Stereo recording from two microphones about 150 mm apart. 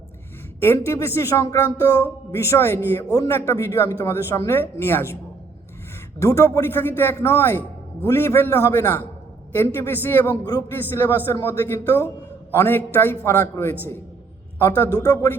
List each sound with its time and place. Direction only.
0.6 s a man's voice: 15° left (ahead or behind)
6.1 s a man's voice: 20° left (ahead or behind)
10.4 s a man's voice: 25° left (ahead or behind)